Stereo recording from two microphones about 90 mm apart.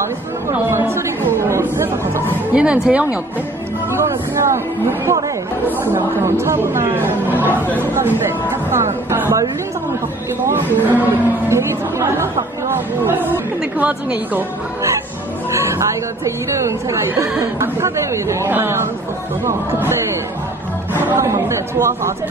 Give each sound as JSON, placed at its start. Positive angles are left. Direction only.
{"t": 0.5, "sound": "chatter", "side_deg": -25}
{"t": 2.5, "sound": "speech", "side_deg": -10}
{"t": 3.9, "sound": "speech", "side_deg": -30}
{"t": 6.2, "sound": "speech", "side_deg": -30}
{"t": 10.4, "sound": "speech", "side_deg": -20}
{"t": 16.3, "sound": "speech", "side_deg": -30}
{"t": 21.2, "sound": "speech", "side_deg": -30}